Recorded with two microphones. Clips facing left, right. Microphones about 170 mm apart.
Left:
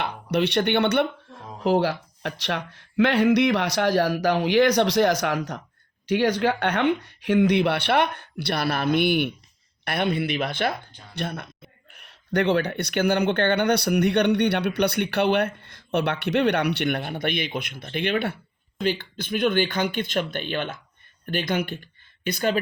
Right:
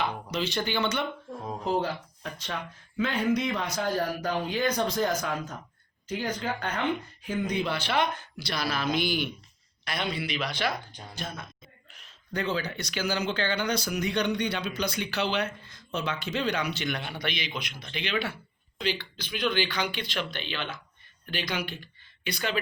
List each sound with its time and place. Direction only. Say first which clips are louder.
0.0 s speech: left 6 dB; 65° left (ahead or behind)
1.6 s a man's voice: left 8 dB; 80° left; by 10.8 s 55° left (ahead or behind)
11.1 s a man's voice: left 8 dB; 65° left (ahead or behind); by 22.5 s 45° left (ahead or behind)